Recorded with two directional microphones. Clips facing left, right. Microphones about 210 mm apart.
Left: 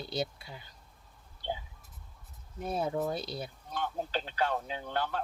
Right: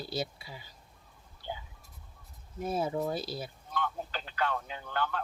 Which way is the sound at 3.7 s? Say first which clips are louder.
Left 2 dB; 35° left (ahead or behind).